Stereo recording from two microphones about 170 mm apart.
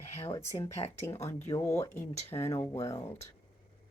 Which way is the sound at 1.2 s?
15° left (ahead or behind).